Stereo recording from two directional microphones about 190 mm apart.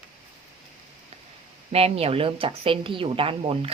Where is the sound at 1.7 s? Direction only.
30° right (ahead or behind).